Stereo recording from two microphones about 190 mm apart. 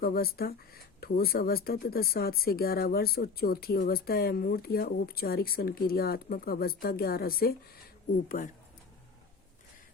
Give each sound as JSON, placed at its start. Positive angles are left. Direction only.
{"t": 0.0, "sound": "speech", "side_deg": 50}